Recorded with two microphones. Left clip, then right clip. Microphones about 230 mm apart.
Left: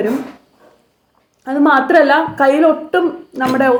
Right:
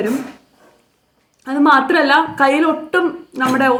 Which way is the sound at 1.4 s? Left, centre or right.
Centre.